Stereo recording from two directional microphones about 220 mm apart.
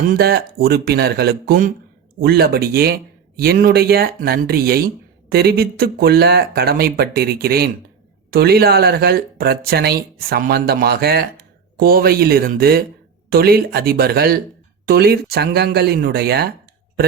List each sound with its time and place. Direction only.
0.1 s speech: 45° right (ahead or behind)